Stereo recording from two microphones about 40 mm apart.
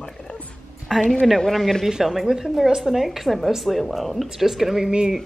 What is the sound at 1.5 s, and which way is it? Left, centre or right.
Speech, centre.